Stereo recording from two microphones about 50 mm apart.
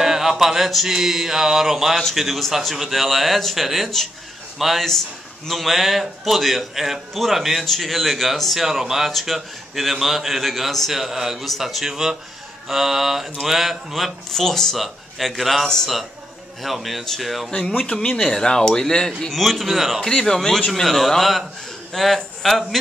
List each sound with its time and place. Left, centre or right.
0.0 s a man's voice: centre
14.3 s a man's voice: centre
17.5 s speech: centre
19.3 s a man's voice: centre
20.0 s a man's voice: centre